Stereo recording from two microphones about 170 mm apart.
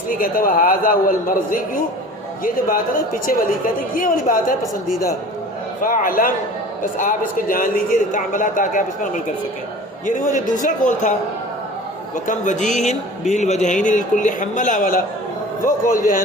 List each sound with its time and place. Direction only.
0.1 s a man's voice: 55° left (ahead or behind)
5.8 s a man's voice: 55° left (ahead or behind)
12.1 s a man's voice: 50° left (ahead or behind)